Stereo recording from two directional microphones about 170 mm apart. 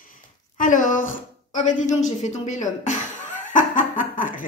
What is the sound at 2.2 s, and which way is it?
Chuckle, 45° left (ahead or behind).